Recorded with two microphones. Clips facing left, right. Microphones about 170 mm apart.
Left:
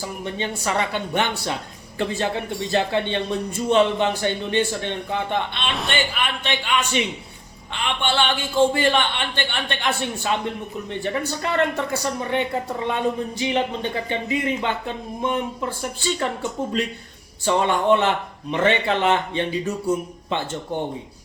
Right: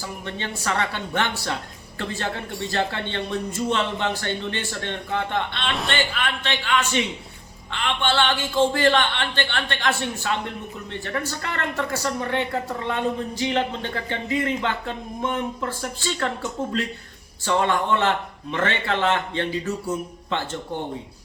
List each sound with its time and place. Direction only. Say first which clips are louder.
0.3 s speech: left 2 dB; 15° left (ahead or behind)
17.4 s speech: left 2 dB; 15° left (ahead or behind)